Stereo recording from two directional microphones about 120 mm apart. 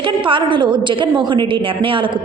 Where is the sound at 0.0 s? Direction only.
45° right (ahead or behind).